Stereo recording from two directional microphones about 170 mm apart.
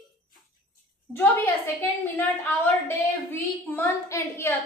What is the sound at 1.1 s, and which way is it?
A woman's voice, 10° left (ahead or behind).